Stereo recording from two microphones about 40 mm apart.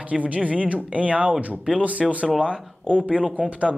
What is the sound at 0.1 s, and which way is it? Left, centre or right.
Speech, right.